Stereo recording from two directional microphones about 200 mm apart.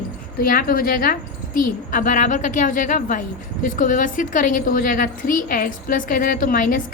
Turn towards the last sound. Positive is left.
turn(degrees=45)  # may be behind; listen again after turning